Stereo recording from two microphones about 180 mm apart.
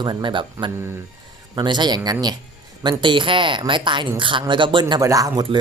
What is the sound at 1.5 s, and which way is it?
Speech, 25° right (ahead or behind).